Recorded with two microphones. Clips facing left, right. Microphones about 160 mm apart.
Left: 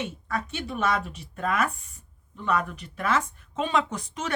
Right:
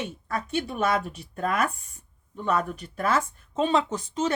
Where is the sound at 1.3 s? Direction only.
40° right (ahead or behind).